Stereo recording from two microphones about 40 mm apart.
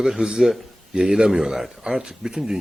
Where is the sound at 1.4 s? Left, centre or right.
Centre.